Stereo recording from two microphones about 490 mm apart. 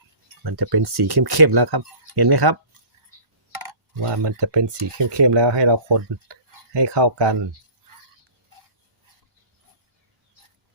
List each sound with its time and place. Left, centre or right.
0.4 s speech: right
4.1 s speech: right